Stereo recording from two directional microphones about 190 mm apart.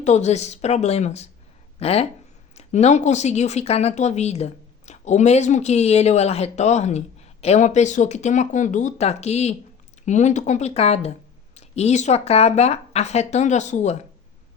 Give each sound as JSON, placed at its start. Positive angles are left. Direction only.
{"t": 0.0, "sound": "speech", "side_deg": 35}